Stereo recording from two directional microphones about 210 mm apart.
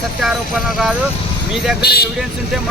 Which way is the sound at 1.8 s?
50° left (ahead or behind).